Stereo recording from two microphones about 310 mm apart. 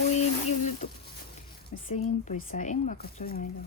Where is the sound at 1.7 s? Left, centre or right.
Left.